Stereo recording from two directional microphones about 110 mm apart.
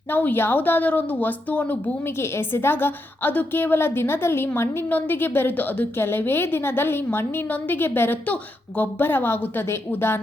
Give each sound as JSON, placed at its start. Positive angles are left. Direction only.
{"t": 0.1, "sound": "a woman's voice", "side_deg": 15}